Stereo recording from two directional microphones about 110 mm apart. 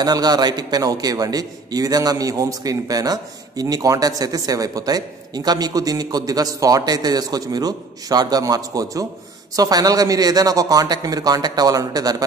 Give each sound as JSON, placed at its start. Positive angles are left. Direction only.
{"t": 0.0, "sound": "a man's voice", "side_deg": -40}